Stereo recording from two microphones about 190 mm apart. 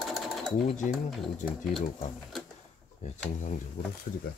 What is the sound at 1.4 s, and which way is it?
Speech, 45° left (ahead or behind).